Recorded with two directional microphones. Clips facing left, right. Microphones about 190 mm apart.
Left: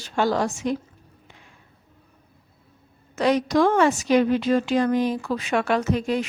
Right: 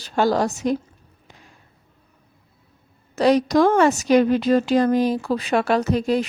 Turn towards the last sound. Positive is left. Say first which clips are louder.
# right 3 dB
turn(degrees=-35)  # may be behind; listen again after turning